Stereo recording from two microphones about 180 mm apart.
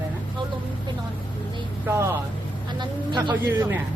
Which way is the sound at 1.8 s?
15° right (ahead or behind).